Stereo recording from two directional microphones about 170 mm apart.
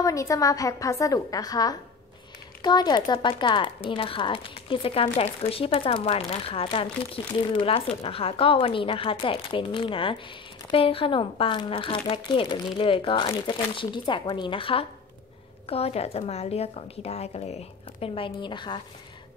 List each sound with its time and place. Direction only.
0.0 s speech: 20° left (ahead or behind)